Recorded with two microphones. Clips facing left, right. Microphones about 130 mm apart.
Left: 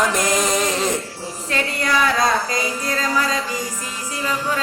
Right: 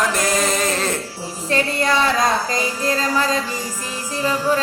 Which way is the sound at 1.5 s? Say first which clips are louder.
Right 3 dB; 25° right (ahead or behind).